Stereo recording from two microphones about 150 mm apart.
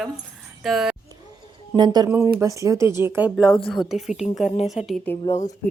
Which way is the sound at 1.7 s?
30° right (ahead or behind).